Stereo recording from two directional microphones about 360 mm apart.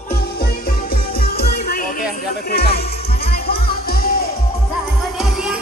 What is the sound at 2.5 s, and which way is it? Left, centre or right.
Speech, left.